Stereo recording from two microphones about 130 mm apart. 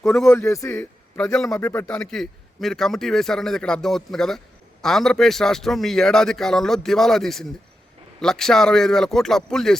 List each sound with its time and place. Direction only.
0.0 s a man's voice: 5° left (ahead or behind)
1.6 s a man's voice: 20° left (ahead or behind)
1.9 s a man's voice: 5° left (ahead or behind)